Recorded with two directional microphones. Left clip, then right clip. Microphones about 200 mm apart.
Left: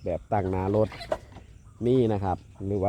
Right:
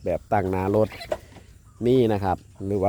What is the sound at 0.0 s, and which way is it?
Speech, 20° right (ahead or behind).